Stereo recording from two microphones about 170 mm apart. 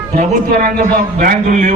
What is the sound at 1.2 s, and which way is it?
Speech, 50° right (ahead or behind).